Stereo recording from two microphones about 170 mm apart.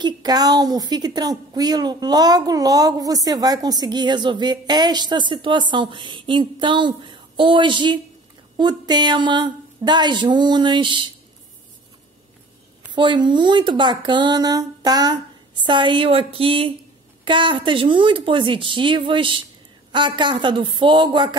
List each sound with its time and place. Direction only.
0.0 s a woman's voice: 25° right (ahead or behind)
12.9 s a woman's voice: 25° right (ahead or behind)